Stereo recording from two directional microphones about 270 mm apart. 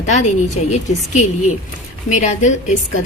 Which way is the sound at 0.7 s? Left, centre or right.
Left.